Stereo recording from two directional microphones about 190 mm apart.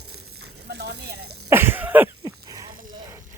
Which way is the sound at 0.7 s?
60° right (ahead or behind).